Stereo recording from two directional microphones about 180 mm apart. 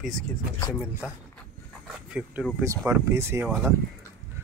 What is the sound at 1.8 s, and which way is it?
Dog, 5° right (ahead or behind).